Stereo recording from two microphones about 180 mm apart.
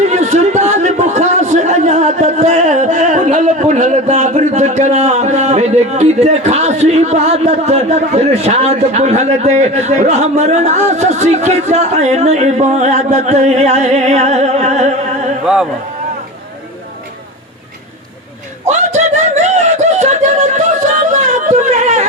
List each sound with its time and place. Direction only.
0.0 s a man's voice: 40° right (ahead or behind)
18.9 s speech: 40° right (ahead or behind)
21.1 s a sound: 40° right (ahead or behind)